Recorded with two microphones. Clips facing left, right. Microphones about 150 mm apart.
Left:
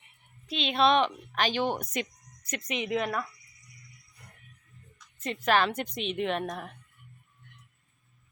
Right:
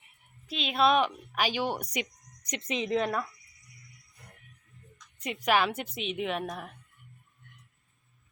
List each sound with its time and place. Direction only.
0.4 s a woman's voice: 5° right (ahead or behind)
2.6 s a woman's voice: 30° right (ahead or behind)
2.9 s a woman's voice: 5° left (ahead or behind)
5.2 s a woman's voice: 10° right (ahead or behind)